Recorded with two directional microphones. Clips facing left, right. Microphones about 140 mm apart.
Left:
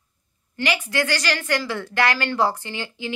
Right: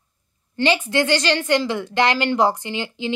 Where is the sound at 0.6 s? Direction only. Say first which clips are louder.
Right 5 dB; 25° right (ahead or behind).